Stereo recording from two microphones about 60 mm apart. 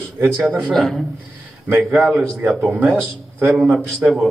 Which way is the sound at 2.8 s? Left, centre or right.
Right.